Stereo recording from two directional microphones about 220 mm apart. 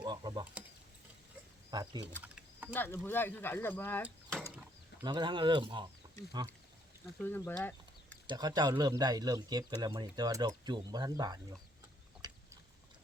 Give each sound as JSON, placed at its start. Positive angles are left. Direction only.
{"t": 0.0, "sound": "speech", "side_deg": -20}
{"t": 1.7, "sound": "speech", "side_deg": -20}
{"t": 2.2, "sound": "a sound", "side_deg": -5}
{"t": 2.7, "sound": "speech", "side_deg": 10}
{"t": 4.0, "sound": "mechanisms", "side_deg": 0}
{"t": 5.0, "sound": "speech", "side_deg": -20}
{"t": 7.2, "sound": "speech", "side_deg": 10}
{"t": 8.3, "sound": "speech", "side_deg": -20}